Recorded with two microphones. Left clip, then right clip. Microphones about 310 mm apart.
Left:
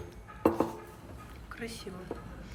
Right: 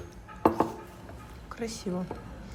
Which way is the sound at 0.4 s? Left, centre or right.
Centre.